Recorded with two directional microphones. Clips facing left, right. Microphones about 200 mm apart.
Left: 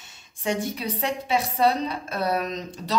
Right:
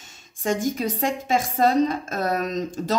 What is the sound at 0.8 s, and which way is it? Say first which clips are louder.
A woman's voice: right 3 dB; 45° right (ahead or behind).